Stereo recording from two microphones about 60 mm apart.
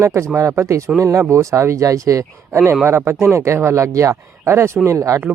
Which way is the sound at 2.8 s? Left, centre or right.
Right.